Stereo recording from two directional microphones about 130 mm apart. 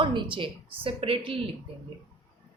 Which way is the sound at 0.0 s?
40° right (ahead or behind).